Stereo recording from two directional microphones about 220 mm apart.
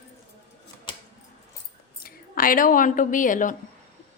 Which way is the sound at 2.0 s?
40° left (ahead or behind).